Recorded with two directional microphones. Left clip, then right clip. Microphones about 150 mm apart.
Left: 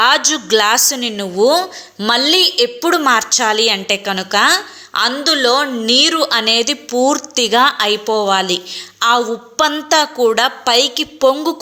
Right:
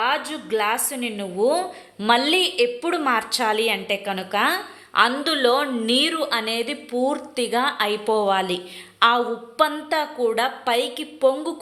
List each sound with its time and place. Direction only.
0.0 s a sound: 35° left (ahead or behind)
0.4 s a woman's voice: 30° left (ahead or behind)
2.0 s a woman's voice: 15° left (ahead or behind)